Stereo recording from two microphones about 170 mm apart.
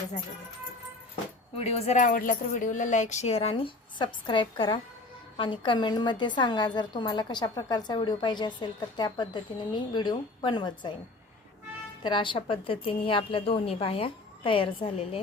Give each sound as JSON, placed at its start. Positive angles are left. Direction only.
{"t": 1.5, "sound": "a woman's voice", "side_deg": 35}
{"t": 12.0, "sound": "speech", "side_deg": 30}